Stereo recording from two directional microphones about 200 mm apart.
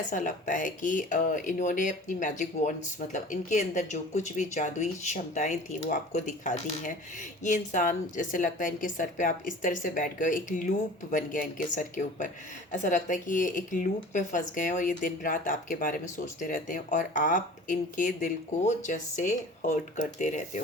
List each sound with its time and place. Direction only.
0.1 s speech: 40° left (ahead or behind)